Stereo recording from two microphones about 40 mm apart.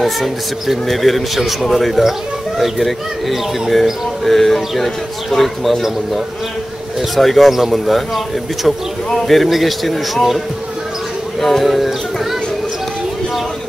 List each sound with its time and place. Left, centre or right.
0.0 s speech: centre
7.2 s speech: centre
9.3 s speech: centre
11.4 s music: centre